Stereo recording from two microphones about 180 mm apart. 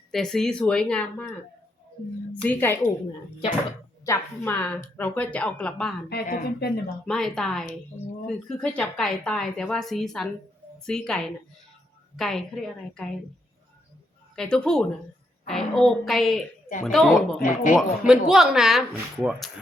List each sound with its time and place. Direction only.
0.1 s a woman's voice: centre (ahead or behind)
2.4 s speech: 10° left (ahead or behind)
4.0 s speech: 15° left (ahead or behind)
6.1 s speech: 55° left (ahead or behind)
7.0 s a woman's voice: 5° left (ahead or behind)
14.3 s a woman's voice: 5° left (ahead or behind)
17.4 s speech: 45° left (ahead or behind)
17.7 s a woman's voice: 5° right (ahead or behind)